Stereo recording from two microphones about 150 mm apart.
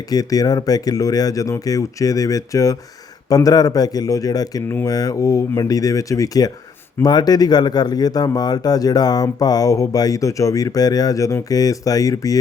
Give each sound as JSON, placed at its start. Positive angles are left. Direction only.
{"t": 0.1, "sound": "speech", "side_deg": 25}